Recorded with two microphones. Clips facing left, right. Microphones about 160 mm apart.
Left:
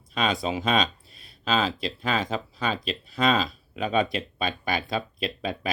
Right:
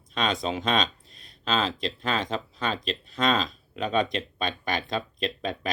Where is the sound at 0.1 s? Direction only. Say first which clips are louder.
Left 1 dB; 5° left (ahead or behind).